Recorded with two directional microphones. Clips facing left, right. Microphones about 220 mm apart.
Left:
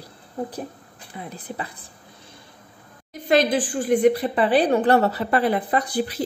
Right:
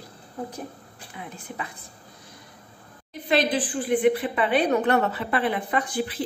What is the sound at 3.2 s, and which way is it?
A woman's voice, 45° left (ahead or behind).